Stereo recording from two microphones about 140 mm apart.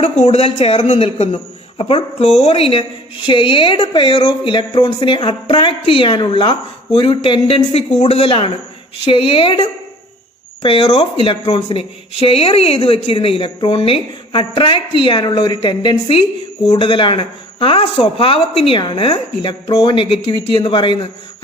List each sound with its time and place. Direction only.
0.0 s a man's voice: 50° left (ahead or behind); by 21.1 s 35° left (ahead or behind)